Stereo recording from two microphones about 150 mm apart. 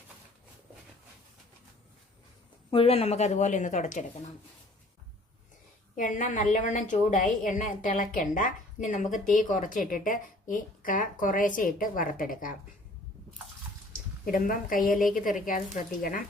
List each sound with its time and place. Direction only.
2.6 s a woman's voice: 40° left (ahead or behind)
6.0 s a woman's voice: 60° left (ahead or behind)
14.3 s a woman's voice: 65° left (ahead or behind)